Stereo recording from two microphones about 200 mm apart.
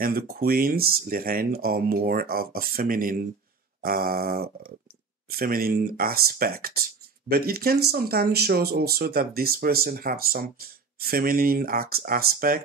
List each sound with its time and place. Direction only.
0.0 s speech: 50° right (ahead or behind)